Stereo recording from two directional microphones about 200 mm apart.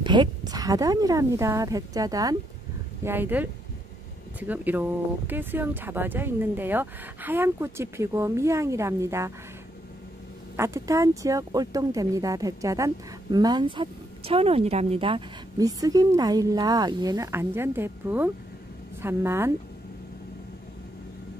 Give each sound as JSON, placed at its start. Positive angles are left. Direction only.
{"t": 0.0, "sound": "speech", "side_deg": -20}
{"t": 10.5, "sound": "speech", "side_deg": -15}